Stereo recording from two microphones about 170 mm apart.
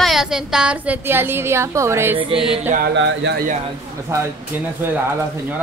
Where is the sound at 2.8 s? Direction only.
80° right.